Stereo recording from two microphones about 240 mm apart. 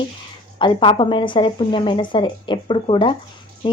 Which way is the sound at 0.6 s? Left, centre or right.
Centre.